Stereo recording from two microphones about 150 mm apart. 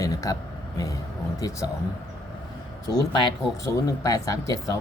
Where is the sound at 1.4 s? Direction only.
25° left (ahead or behind).